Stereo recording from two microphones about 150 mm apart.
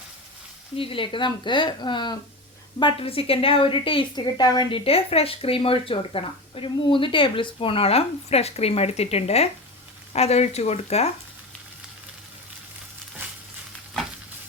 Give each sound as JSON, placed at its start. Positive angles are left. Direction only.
{"t": 0.8, "sound": "a woman's voice", "side_deg": 35}